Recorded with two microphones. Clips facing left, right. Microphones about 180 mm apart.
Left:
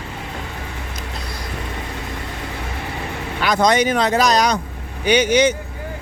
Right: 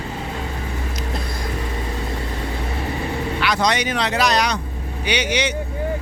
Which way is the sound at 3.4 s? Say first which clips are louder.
Left 6 dB; 50° left (ahead or behind).